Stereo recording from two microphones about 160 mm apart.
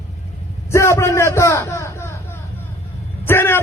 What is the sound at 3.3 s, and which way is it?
Speech, 15° left (ahead or behind).